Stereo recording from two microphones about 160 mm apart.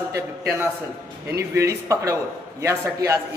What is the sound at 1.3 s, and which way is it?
A man's voice, 20° right (ahead or behind).